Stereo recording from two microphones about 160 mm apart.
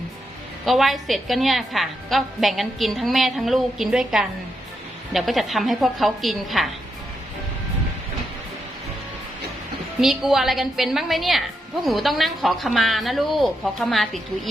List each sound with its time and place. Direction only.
0.6 s a woman's voice: centre (ahead or behind)
10.0 s a woman's voice: centre (ahead or behind)